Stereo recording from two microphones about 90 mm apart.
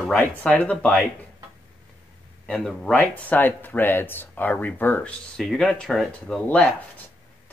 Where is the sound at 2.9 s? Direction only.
15° left (ahead or behind).